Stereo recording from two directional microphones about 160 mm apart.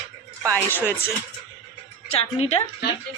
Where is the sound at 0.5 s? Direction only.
10° left (ahead or behind).